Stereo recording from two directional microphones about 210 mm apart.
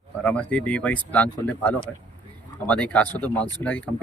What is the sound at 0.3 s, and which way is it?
Speech, 5° left (ahead or behind).